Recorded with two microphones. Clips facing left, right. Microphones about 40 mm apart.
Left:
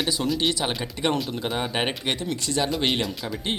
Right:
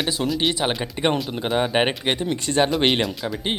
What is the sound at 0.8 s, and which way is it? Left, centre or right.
Speech, right.